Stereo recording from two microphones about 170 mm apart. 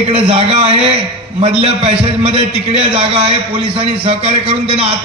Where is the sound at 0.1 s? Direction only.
35° right (ahead or behind).